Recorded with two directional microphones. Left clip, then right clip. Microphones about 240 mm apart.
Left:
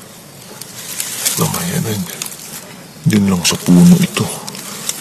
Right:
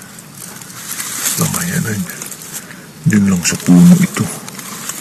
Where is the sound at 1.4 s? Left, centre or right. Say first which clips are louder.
Even; centre.